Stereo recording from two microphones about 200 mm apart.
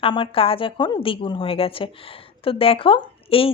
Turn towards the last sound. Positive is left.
turn(degrees=25)  # may be behind; listen again after turning